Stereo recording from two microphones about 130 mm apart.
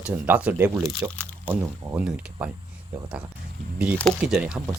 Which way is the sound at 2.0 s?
10° right (ahead or behind).